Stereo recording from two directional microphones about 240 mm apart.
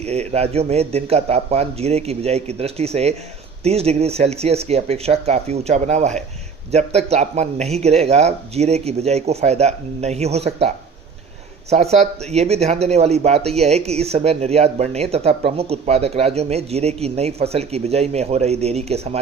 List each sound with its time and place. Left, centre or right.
0.0 s speech: right
11.7 s speech: right